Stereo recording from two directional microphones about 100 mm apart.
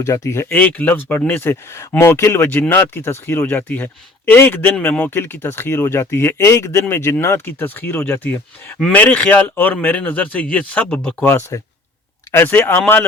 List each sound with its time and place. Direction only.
0.0 s speech: 30° left (ahead or behind)
0.4 s speech: 15° left (ahead or behind)
11.3 s speech: 25° left (ahead or behind)